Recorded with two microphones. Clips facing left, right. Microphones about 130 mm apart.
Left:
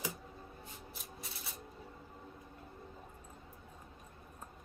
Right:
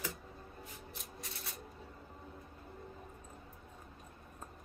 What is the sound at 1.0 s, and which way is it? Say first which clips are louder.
Rub: right 1 dB; centre (ahead or behind).